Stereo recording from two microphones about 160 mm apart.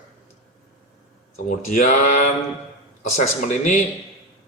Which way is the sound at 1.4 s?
50° left (ahead or behind).